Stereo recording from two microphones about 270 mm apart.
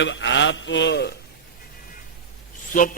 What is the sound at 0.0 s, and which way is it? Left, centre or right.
A man's voice, left.